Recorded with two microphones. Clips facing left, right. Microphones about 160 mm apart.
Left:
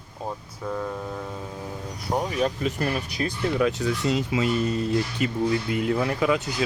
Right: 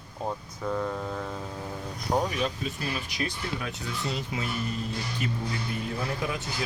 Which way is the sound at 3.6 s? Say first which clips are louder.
Left 11 dB; 90° left.